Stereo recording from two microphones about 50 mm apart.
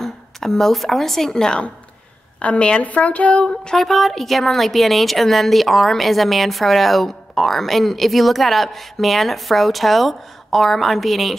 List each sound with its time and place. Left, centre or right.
0.0 s a woman's voice: centre
2.4 s speech: left
3.4 s a woman's voice: centre